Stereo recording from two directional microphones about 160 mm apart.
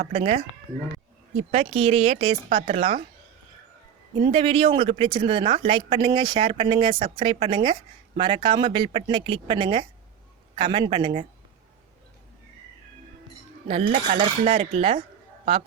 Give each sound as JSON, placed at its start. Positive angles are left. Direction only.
{"t": 0.0, "sound": "a woman's voice", "side_deg": -40}
{"t": 1.5, "sound": "a woman's voice", "side_deg": -40}
{"t": 4.2, "sound": "a woman's voice", "side_deg": -35}
{"t": 13.7, "sound": "a woman's voice", "side_deg": -40}